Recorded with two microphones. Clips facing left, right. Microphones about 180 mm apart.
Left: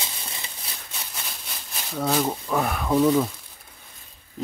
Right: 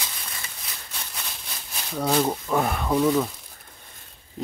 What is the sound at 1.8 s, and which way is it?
Speech, centre (ahead or behind).